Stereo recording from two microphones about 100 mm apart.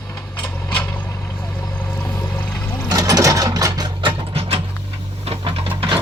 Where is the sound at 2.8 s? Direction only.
40° right (ahead or behind).